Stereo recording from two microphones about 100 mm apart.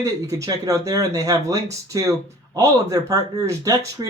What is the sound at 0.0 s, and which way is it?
Speech, 35° right (ahead or behind).